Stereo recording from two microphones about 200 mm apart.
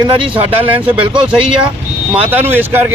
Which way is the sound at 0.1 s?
25° right (ahead or behind).